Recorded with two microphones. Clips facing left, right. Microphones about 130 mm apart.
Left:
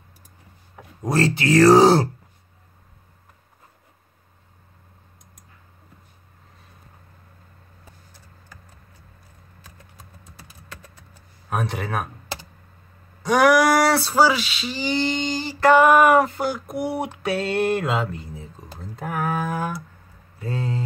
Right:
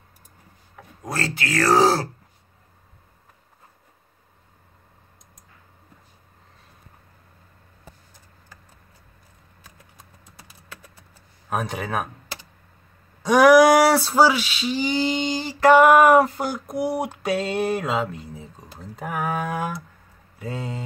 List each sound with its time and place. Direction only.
0.7 s speech: 25° left (ahead or behind)
11.5 s speech: 5° right (ahead or behind)
13.9 s speech: centre (ahead or behind)
18.8 s a sound: centre (ahead or behind)